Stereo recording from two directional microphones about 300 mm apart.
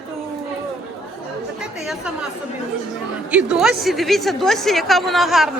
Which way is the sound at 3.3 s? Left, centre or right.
Centre.